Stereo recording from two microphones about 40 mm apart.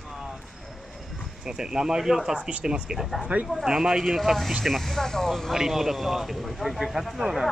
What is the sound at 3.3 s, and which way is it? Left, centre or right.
Speech, right.